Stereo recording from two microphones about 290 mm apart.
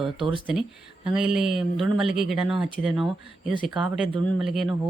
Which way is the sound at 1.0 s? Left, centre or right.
Centre.